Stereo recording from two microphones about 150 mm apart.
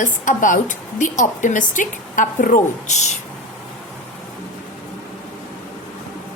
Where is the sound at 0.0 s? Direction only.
60° left (ahead or behind).